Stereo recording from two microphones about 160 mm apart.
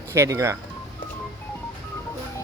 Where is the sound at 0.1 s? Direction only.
20° right (ahead or behind).